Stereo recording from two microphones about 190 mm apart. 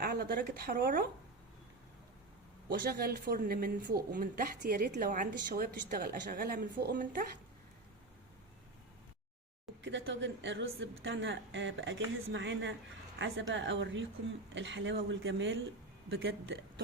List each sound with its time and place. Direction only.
0.0 s speech: 50° right (ahead or behind)
2.6 s speech: 55° right (ahead or behind)
9.8 s a woman's voice: 70° right (ahead or behind)
13.1 s a woman's voice: 90° right